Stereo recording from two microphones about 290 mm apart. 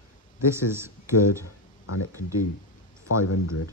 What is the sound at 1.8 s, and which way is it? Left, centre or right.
Speech, left.